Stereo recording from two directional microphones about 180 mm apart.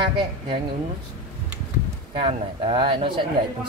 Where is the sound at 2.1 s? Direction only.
30° right (ahead or behind).